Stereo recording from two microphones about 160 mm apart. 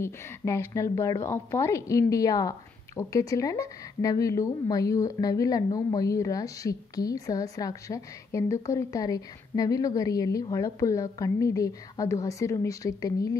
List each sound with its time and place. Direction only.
0.0 s a woman's voice: 15° left (ahead or behind)